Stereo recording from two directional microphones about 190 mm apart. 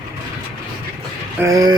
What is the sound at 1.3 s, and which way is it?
Speech, 20° right (ahead or behind).